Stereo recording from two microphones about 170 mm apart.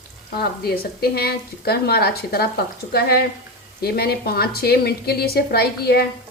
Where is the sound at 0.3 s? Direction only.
65° left (ahead or behind).